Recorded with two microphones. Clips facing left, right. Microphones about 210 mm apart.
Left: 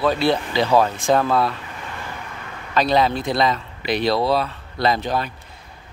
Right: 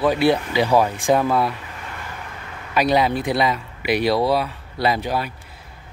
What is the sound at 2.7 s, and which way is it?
Speech, 10° right (ahead or behind).